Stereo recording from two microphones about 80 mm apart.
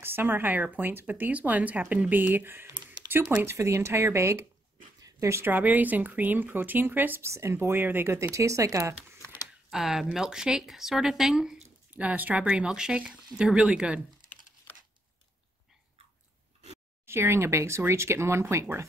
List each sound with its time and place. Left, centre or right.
0.0 s a woman's voice: right
5.0 s a sound: right
5.4 s a woman's voice: right
8.2 s speech: right
9.7 s speech: centre
11.9 s speech: centre
17.0 s speech: right